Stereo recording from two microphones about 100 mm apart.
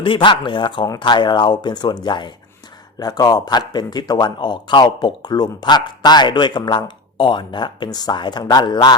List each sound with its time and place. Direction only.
0.0 s a man's voice: 55° left (ahead or behind)